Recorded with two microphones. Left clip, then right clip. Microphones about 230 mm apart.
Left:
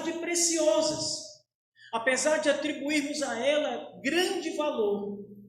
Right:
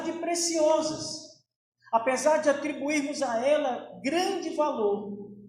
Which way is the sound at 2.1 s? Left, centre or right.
Right.